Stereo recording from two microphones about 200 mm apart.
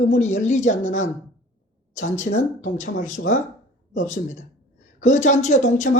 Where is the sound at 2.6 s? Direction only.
35° left (ahead or behind).